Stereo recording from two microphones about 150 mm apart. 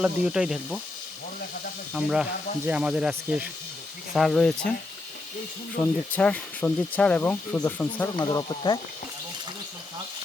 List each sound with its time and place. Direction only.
0.0 s speech: 5° right (ahead or behind)
1.9 s speech: centre (ahead or behind)
5.8 s speech: 10° left (ahead or behind)
8.0 s speech: 25° left (ahead or behind)